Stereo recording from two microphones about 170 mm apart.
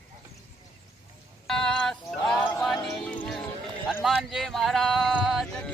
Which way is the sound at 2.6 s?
Centre (ahead or behind).